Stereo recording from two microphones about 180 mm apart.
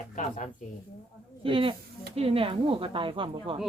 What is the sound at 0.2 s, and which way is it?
Speech, 45° left (ahead or behind).